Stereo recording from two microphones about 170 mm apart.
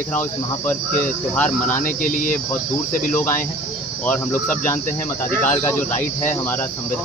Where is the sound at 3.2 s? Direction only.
15° left (ahead or behind).